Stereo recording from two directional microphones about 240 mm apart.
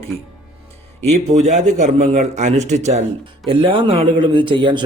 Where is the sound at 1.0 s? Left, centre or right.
Right.